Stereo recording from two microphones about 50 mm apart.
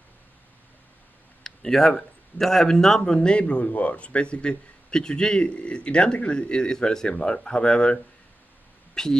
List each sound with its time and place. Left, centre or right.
1.4 s a man's voice: centre